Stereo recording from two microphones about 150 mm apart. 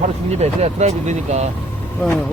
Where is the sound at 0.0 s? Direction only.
50° right (ahead or behind).